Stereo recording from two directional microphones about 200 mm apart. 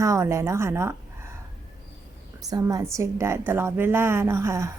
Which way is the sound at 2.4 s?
20° right (ahead or behind).